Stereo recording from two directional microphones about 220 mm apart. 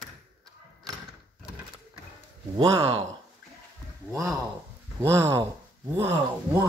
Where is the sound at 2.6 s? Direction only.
20° right (ahead or behind).